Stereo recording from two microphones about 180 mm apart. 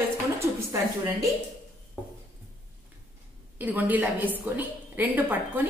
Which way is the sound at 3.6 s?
10° right (ahead or behind).